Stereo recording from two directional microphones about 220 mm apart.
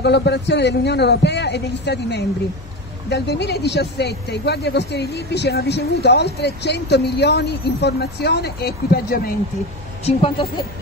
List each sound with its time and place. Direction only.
0.0 s speech: 50° left (ahead or behind)
10.0 s a woman's voice: 25° left (ahead or behind)